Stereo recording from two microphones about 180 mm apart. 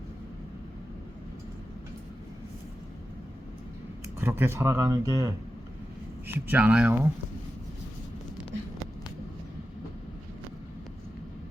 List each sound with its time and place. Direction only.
4.2 s speech: 15° right (ahead or behind)